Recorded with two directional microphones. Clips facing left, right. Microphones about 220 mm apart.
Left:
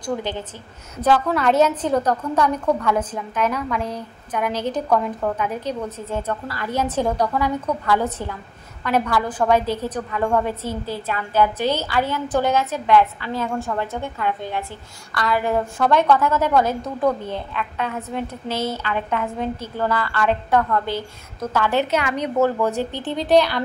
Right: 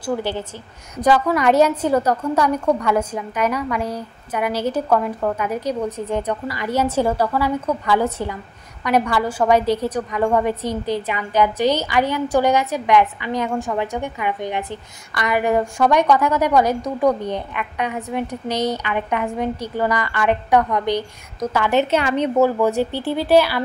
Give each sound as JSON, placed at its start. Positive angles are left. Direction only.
{"t": 0.0, "sound": "a woman's voice", "side_deg": -10}
{"t": 21.9, "sound": "a woman's voice", "side_deg": -30}
{"t": 22.4, "sound": "a woman's voice", "side_deg": -10}